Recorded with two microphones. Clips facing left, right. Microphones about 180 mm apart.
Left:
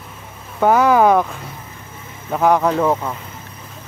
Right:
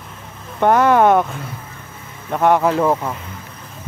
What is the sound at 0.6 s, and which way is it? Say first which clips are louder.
Speech: even; centre (ahead or behind).